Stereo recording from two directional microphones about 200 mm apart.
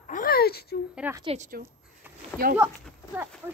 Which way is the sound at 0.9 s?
10° right (ahead or behind).